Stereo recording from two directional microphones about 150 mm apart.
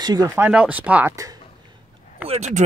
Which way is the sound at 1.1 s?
20° right (ahead or behind).